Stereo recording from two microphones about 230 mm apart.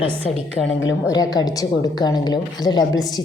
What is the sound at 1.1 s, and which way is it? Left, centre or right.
A woman's voice, centre.